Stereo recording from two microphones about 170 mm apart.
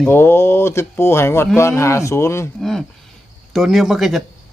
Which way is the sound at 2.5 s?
Centre (ahead or behind).